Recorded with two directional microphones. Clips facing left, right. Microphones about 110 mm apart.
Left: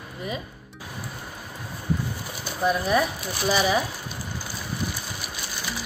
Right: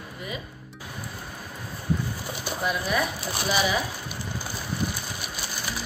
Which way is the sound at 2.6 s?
35° left (ahead or behind).